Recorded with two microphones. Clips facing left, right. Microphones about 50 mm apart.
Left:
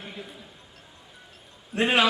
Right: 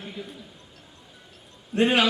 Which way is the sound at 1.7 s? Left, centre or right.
Centre.